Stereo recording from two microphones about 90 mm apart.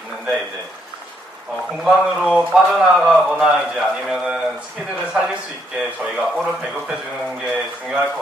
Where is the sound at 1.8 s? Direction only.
10° right (ahead or behind).